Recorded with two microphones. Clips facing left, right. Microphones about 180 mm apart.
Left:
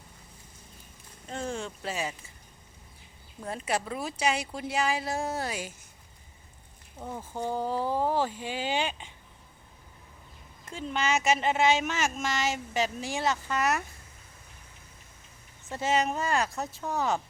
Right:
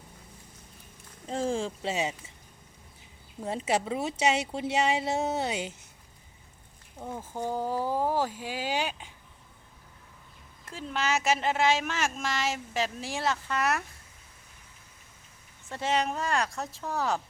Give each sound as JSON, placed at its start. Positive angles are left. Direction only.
{"t": 1.3, "sound": "speech", "side_deg": -30}
{"t": 3.4, "sound": "speech", "side_deg": -25}
{"t": 7.0, "sound": "speech", "side_deg": -10}
{"t": 10.7, "sound": "speech", "side_deg": 0}
{"t": 15.7, "sound": "speech", "side_deg": 5}